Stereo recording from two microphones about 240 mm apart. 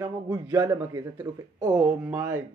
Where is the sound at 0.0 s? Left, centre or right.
Centre.